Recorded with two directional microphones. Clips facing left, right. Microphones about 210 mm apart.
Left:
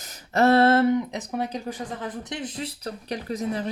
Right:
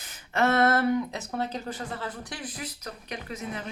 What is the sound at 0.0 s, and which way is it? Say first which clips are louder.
Speech: left 5 dB; 40° left (ahead or behind).